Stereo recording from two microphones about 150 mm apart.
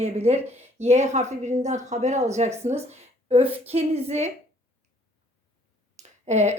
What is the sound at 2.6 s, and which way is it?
Speech, 45° right (ahead or behind).